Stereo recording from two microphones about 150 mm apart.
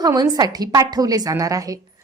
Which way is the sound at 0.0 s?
25° right (ahead or behind).